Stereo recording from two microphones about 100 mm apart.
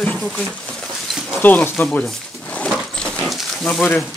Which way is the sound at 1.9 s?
15° left (ahead or behind).